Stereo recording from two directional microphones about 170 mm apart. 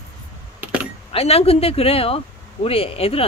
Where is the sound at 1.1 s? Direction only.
35° left (ahead or behind).